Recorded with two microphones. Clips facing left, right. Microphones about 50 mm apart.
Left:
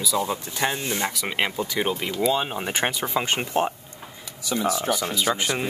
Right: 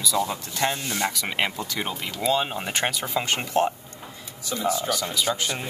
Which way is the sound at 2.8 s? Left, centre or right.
Centre.